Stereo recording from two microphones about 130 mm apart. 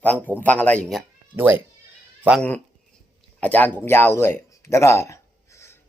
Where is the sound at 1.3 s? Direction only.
20° right (ahead or behind).